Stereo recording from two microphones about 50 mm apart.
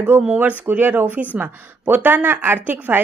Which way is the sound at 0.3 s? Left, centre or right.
Right.